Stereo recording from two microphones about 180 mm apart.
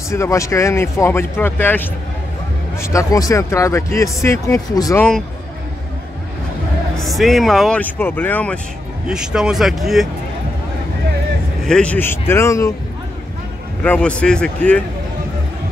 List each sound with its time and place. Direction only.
0.1 s speech: 15° left (ahead or behind)
7.0 s speech: centre (ahead or behind)
9.0 s speech: 5° right (ahead or behind)
11.6 s speech: 5° left (ahead or behind)
13.8 s speech: 5° left (ahead or behind)